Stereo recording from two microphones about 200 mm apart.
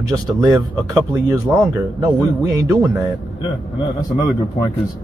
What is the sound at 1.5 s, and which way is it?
Speech, 10° right (ahead or behind).